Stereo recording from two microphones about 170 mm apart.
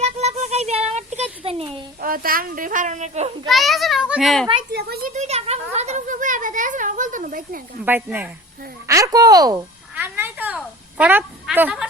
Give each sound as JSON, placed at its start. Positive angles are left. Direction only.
{"t": 0.0, "sound": "a sound", "side_deg": -40}
{"t": 2.0, "sound": "a woman's voice", "side_deg": -55}
{"t": 3.5, "sound": "a child's voice", "side_deg": 0}
{"t": 4.7, "sound": "speech", "side_deg": -70}
{"t": 5.1, "sound": "speech", "side_deg": -40}
{"t": 7.9, "sound": "speech", "side_deg": -10}
{"t": 9.9, "sound": "a sound", "side_deg": -10}